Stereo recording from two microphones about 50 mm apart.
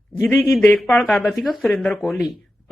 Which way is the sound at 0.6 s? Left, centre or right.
Centre.